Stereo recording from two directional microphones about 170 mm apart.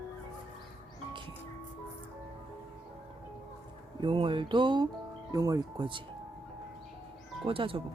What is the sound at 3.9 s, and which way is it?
Speech, 30° right (ahead or behind).